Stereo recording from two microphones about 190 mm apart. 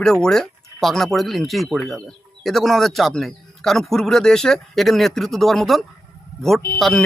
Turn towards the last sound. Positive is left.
turn(degrees=0)  # may be behind; listen again after turning